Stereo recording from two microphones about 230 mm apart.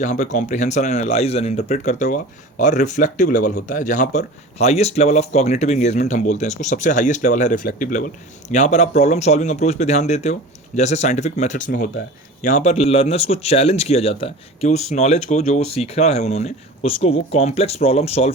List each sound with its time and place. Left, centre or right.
0.0 s a man's voice: left